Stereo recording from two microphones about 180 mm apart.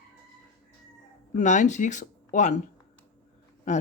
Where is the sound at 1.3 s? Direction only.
45° left (ahead or behind).